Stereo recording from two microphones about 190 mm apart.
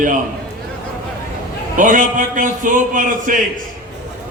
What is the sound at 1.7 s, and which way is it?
A man's voice, 45° right (ahead or behind).